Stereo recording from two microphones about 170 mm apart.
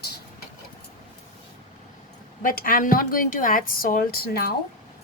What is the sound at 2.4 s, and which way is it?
A woman's voice, 55° left (ahead or behind).